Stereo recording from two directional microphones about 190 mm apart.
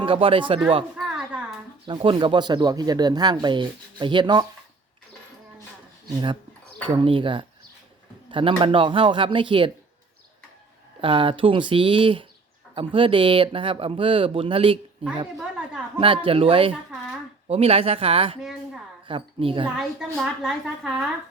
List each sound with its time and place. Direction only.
0.0 s speech: 30° right (ahead or behind)
0.9 s a sound: 5° right (ahead or behind)
1.9 s speech: 25° right (ahead or behind)
6.8 s speech: 25° right (ahead or behind)
11.0 s speech: 25° right (ahead or behind)
15.4 s a sound: 5° right (ahead or behind)
16.0 s speech: 30° right (ahead or behind)
18.3 s a woman's voice: centre (ahead or behind)
19.0 s a woman's voice: 30° right (ahead or behind)
19.7 s a woman's voice: centre (ahead or behind)